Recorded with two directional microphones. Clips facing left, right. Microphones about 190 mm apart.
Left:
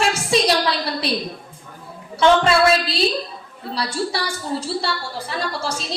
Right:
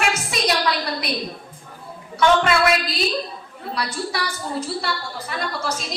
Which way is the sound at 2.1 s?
30° left (ahead or behind).